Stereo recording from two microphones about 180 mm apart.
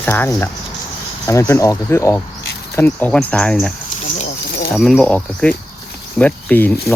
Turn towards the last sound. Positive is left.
turn(degrees=10)  # may be behind; listen again after turning